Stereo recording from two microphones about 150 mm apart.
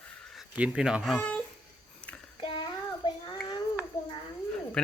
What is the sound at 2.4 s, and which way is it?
Child singing, 30° left (ahead or behind).